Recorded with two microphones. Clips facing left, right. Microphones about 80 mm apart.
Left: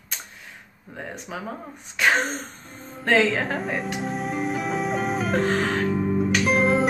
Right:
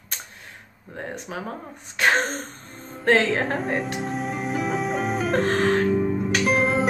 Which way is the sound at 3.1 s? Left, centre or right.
Right.